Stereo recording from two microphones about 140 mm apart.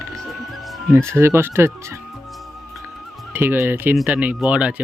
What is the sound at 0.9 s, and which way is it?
Speech, 20° right (ahead or behind).